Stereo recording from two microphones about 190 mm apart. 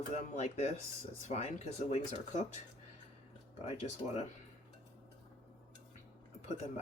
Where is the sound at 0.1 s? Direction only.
35° left (ahead or behind).